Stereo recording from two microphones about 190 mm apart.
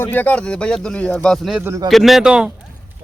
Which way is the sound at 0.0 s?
10° left (ahead or behind).